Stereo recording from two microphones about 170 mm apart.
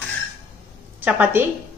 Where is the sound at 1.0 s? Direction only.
10° right (ahead or behind).